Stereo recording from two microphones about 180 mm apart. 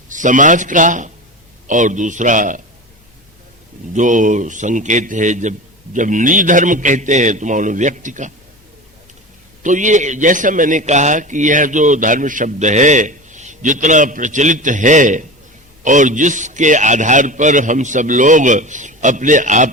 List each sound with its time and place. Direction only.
0.1 s a man's voice: 45° right (ahead or behind)
3.9 s a man's voice: 45° right (ahead or behind)
9.6 s a man's voice: 45° right (ahead or behind)